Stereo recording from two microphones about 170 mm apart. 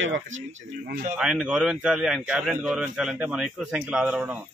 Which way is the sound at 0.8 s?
55° right (ahead or behind).